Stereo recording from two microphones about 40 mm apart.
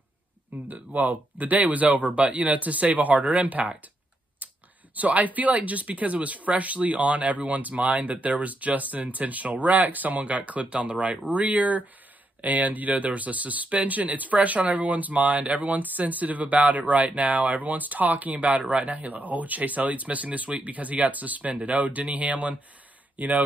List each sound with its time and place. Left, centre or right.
0.7 s speech: right
4.4 s a sound: right
4.9 s speech: right
17.6 s a man's voice: right
18.9 s speech: right